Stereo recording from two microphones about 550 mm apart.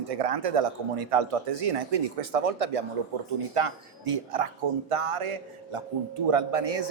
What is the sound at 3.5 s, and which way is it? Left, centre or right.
A man's voice, right.